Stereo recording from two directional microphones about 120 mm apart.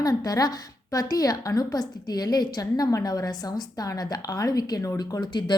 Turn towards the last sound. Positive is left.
turn(degrees=40)  # may be behind; listen again after turning